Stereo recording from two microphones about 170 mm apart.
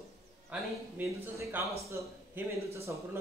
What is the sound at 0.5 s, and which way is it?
Speech, 10° right (ahead or behind).